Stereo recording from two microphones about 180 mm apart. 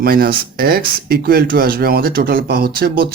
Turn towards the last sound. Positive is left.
turn(degrees=-60)  # may be behind; listen again after turning